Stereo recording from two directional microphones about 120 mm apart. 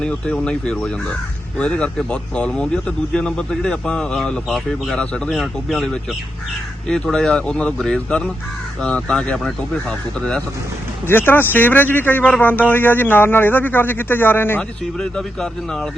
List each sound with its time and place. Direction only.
0.0 s speech: 5° left (ahead or behind)
14.9 s speech: 5° left (ahead or behind)